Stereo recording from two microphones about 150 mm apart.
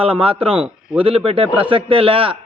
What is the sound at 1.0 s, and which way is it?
A man's voice, 40° right (ahead or behind).